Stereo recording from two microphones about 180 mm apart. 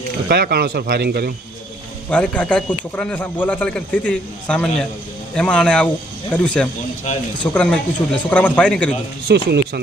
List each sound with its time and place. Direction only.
0.3 s speech: 65° right (ahead or behind)
2.0 s a man's voice: 5° left (ahead or behind)
9.3 s speech: 65° right (ahead or behind)